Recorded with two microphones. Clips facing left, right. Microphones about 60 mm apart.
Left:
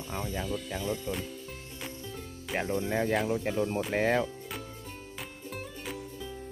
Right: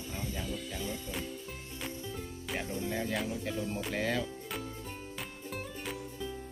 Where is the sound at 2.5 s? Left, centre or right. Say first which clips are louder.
Left 6 dB; left.